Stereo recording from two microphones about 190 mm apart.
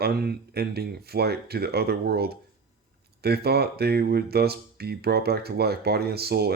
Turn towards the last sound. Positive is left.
turn(degrees=-55)  # may be behind; listen again after turning